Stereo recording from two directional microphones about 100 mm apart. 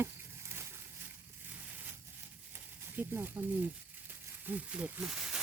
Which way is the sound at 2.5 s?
20° right (ahead or behind).